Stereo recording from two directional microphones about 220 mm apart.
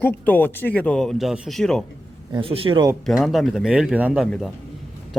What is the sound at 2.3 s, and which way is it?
Speech, 25° right (ahead or behind).